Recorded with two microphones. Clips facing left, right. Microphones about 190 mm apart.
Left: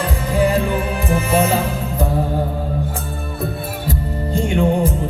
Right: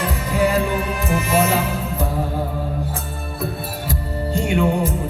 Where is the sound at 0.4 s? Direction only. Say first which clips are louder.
Even; 35° left (ahead or behind).